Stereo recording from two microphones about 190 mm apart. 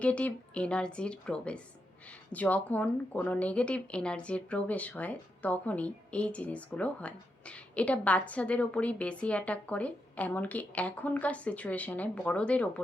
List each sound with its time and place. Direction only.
0.0 s a woman's voice: 5° left (ahead or behind)